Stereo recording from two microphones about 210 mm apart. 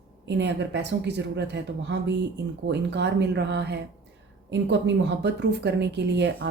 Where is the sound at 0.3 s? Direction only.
55° right (ahead or behind).